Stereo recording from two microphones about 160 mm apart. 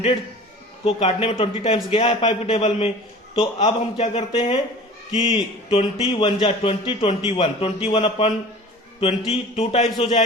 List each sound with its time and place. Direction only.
0.9 s a man's voice: 40° left (ahead or behind)
9.3 s a man's voice: 40° left (ahead or behind)